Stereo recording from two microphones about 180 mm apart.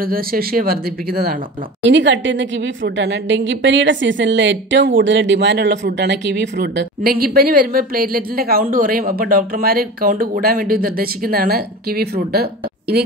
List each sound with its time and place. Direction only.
0.0 s a woman's voice: 55° right (ahead or behind)
1.8 s a woman's voice: 85° right; by 13.1 s 65° right (ahead or behind)